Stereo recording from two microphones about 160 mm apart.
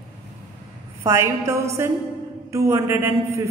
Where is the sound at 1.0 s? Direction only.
20° right (ahead or behind).